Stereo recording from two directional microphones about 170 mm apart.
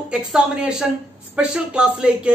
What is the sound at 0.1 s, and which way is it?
A woman's voice, 5° right (ahead or behind).